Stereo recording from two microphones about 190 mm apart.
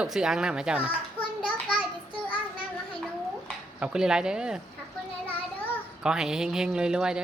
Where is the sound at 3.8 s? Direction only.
5° right (ahead or behind).